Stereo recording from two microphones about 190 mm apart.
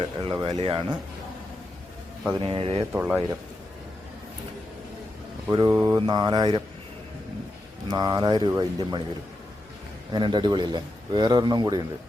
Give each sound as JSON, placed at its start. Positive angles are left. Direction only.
{"t": 0.0, "sound": "speech", "side_deg": -25}
{"t": 2.4, "sound": "speech", "side_deg": -30}
{"t": 2.9, "sound": "speech", "side_deg": -10}
{"t": 5.5, "sound": "speech", "side_deg": -20}
{"t": 7.9, "sound": "speech", "side_deg": -20}
{"t": 10.1, "sound": "speech", "side_deg": -25}